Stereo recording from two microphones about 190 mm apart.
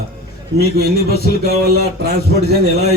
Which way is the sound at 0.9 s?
55° left (ahead or behind).